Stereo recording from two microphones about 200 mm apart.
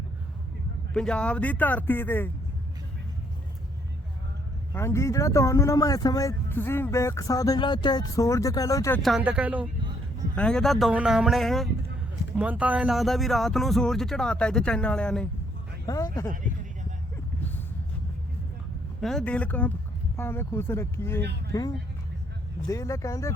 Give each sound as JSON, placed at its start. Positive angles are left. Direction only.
{"t": 0.9, "sound": "speech", "side_deg": 5}
{"t": 4.7, "sound": "speech", "side_deg": 15}
{"t": 9.0, "sound": "speech", "side_deg": 0}
{"t": 10.3, "sound": "speech", "side_deg": 5}
{"t": 19.0, "sound": "speech", "side_deg": 5}
{"t": 22.6, "sound": "speech", "side_deg": 15}